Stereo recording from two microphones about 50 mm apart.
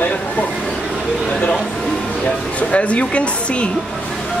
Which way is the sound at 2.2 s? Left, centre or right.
Left.